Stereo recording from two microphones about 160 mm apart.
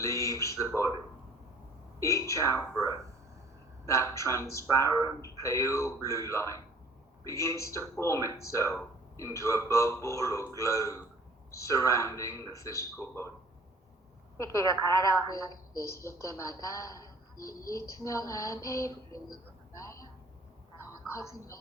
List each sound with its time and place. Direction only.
0.0 s speech: 20° left (ahead or behind)
2.0 s a man's voice: 20° left (ahead or behind)
3.8 s a man's voice: 20° left (ahead or behind)
14.3 s a man's voice: 20° left (ahead or behind)
19.8 s a sound: 20° left (ahead or behind)
21.1 s a man's voice: 20° left (ahead or behind)